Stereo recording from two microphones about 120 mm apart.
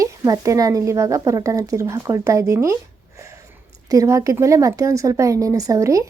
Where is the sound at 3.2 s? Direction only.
25° right (ahead or behind).